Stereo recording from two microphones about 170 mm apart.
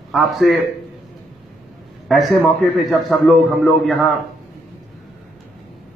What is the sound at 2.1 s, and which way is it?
A man's voice, centre (ahead or behind).